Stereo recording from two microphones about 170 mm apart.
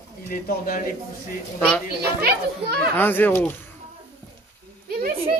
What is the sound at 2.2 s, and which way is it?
Speech, 70° right (ahead or behind).